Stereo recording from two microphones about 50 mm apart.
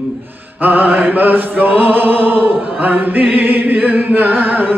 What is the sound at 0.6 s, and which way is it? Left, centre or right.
Mantra, right.